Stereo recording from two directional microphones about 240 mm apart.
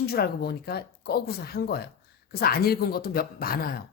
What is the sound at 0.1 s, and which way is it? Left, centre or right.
Speech, left.